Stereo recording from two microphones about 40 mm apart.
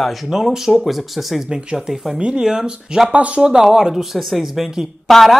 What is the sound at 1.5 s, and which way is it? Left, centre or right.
Speech, centre.